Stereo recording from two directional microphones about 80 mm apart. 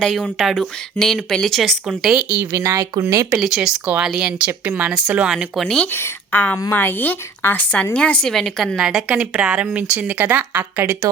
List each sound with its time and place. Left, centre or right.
0.0 s speech: centre
2.9 s speech: right
3.3 s speech: centre
5.5 s speech: centre
5.9 s a woman's voice: left; by 10.9 s right